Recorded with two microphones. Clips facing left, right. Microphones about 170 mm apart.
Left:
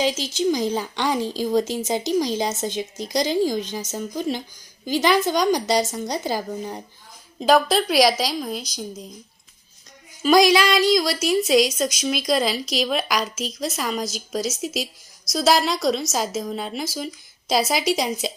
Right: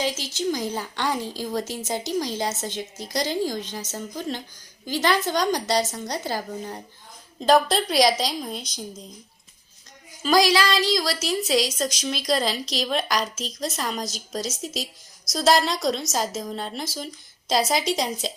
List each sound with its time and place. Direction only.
0.0 s speech: 15° left (ahead or behind)
7.3 s a woman's voice: 5° left (ahead or behind)
10.2 s a woman's voice: 20° left (ahead or behind)